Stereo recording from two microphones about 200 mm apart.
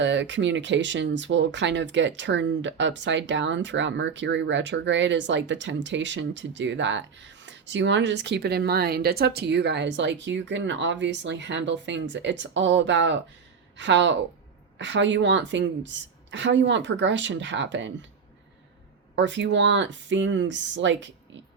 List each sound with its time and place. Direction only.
0.0 s speech: 65° right (ahead or behind)
19.1 s speech: 65° right (ahead or behind)